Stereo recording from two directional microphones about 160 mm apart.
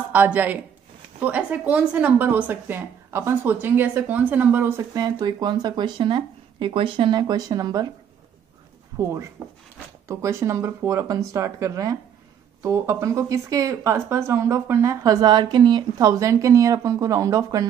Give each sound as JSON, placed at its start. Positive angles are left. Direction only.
{"t": 0.1, "sound": "a woman's voice", "side_deg": -10}
{"t": 8.9, "sound": "a sound", "side_deg": -25}
{"t": 9.4, "sound": "speech", "side_deg": -20}